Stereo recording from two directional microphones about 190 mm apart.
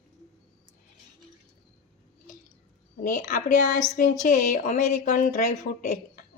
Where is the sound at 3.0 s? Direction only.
45° left (ahead or behind).